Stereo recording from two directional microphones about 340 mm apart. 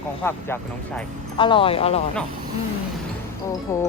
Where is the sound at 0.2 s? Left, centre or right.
Centre.